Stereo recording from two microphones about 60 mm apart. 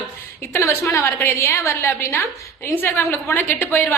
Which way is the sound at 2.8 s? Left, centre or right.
Left.